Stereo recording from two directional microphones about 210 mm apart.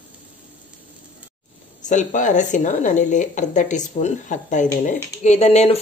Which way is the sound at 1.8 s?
35° left (ahead or behind).